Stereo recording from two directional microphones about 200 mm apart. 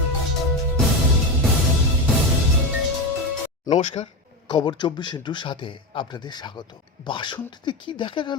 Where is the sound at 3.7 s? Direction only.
30° left (ahead or behind).